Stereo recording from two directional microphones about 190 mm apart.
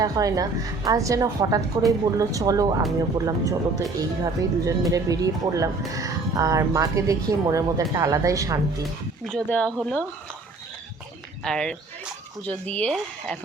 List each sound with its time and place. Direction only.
0.0 s a woman's voice: 20° right (ahead or behind)
8.8 s speech: 5° left (ahead or behind)
11.4 s speech: 5° left (ahead or behind)